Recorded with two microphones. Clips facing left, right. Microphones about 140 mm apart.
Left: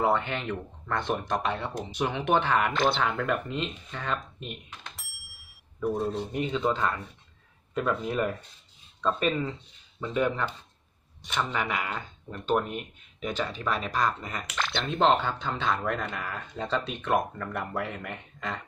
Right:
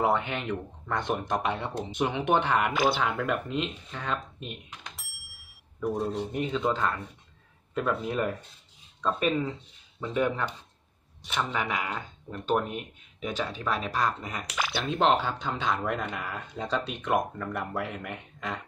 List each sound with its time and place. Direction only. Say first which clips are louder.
0.0 s speech: even; 10° right (ahead or behind)
2.7 s speech: even; 5° right (ahead or behind)